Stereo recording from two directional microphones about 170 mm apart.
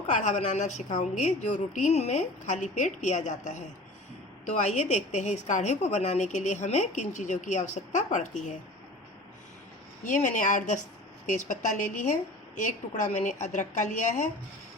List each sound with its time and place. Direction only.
0.1 s a woman's voice: 45° left (ahead or behind)
10.0 s a woman's voice: 50° left (ahead or behind)